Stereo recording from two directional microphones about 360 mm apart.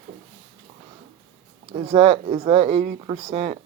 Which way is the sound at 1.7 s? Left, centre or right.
Centre.